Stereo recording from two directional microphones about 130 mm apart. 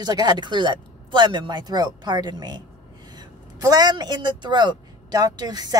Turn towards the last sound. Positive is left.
turn(degrees=-30)  # may be behind; listen again after turning